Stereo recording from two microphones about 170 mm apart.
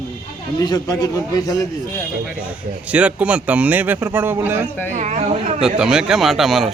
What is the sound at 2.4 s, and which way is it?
Speech, 10° right (ahead or behind).